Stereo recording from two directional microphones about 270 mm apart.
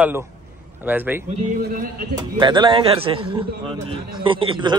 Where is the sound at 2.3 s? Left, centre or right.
Centre.